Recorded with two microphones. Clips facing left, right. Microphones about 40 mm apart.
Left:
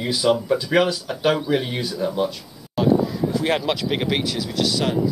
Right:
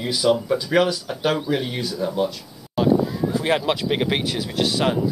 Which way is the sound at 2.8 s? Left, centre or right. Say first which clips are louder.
Even; centre.